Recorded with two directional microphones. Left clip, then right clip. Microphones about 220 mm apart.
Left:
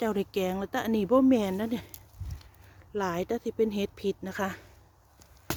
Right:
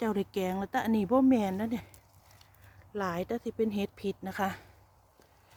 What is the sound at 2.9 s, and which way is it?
Speech, 10° left (ahead or behind).